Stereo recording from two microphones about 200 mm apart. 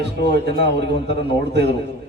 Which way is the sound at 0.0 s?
55° right (ahead or behind).